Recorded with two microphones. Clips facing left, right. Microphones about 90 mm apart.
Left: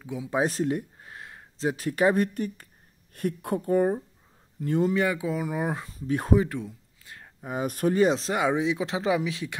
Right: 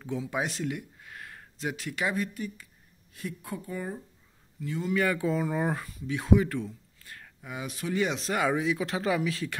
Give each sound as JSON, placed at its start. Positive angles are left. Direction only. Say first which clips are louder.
{"t": 0.0, "sound": "speech", "louder": "right 1 dB", "side_deg": 10}
{"t": 0.3, "sound": "speech", "louder": "left 9 dB", "side_deg": 35}
{"t": 2.1, "sound": "speech", "louder": "left 6 dB", "side_deg": 55}
{"t": 4.9, "sound": "speech", "louder": "left 1 dB", "side_deg": 15}
{"t": 5.9, "sound": "speech", "louder": "left 2 dB", "side_deg": 40}
{"t": 6.4, "sound": "a sound", "louder": "even", "side_deg": 20}
{"t": 7.4, "sound": "speech", "louder": "left 9 dB", "side_deg": 45}